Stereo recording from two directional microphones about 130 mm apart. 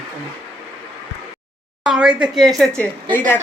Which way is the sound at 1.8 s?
5° right (ahead or behind).